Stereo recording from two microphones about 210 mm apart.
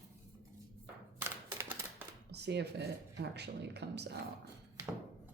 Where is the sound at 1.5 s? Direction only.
15° right (ahead or behind).